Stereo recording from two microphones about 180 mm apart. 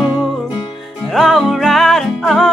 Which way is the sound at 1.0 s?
Centre (ahead or behind).